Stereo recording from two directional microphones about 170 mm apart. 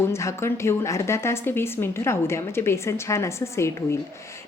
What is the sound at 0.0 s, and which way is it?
A woman's voice, 15° left (ahead or behind).